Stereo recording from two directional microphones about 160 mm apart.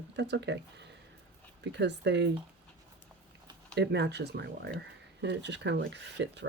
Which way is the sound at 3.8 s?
90° right.